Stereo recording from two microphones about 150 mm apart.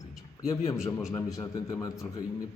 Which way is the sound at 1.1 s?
20° left (ahead or behind).